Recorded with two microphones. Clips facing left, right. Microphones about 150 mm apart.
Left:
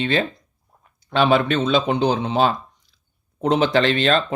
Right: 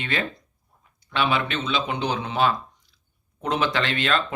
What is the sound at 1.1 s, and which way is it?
Speech, 40° left (ahead or behind).